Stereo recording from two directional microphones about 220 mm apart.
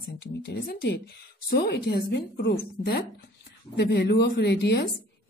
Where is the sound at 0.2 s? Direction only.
45° left (ahead or behind).